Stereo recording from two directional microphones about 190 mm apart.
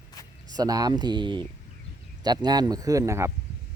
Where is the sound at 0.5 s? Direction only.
20° right (ahead or behind).